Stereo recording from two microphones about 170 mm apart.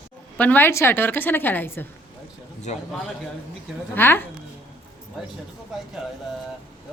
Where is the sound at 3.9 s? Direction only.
10° left (ahead or behind).